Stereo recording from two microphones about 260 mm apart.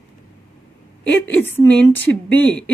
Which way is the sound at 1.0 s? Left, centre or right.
Left.